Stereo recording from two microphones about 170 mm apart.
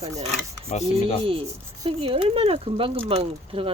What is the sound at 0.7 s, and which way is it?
Speech, 45° left (ahead or behind).